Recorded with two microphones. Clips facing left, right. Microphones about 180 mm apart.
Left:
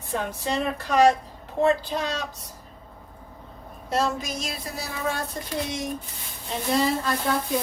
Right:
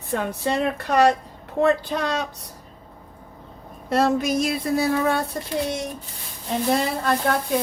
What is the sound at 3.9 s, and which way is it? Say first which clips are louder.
Speech: right 6 dB; 60° right (ahead or behind).